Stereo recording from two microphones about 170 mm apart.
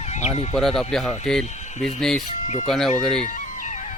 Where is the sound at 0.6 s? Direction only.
Centre (ahead or behind).